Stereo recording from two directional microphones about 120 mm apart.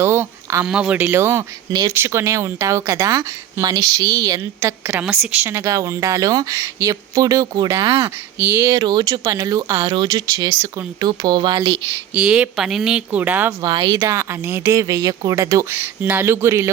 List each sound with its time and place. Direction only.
0.0 s a sound: 20° right (ahead or behind)
0.7 s speech: 10° right (ahead or behind); by 4.7 s 30° right (ahead or behind)
4.9 s speech: 15° right (ahead or behind)
8.6 s speech: 35° right (ahead or behind)
12.1 s speech: 5° right (ahead or behind)
13.6 s speech: 40° right (ahead or behind)
14.0 s speech: 25° right (ahead or behind)